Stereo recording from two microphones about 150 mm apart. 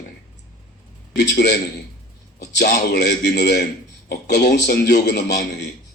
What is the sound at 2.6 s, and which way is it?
A man's voice, 90° left.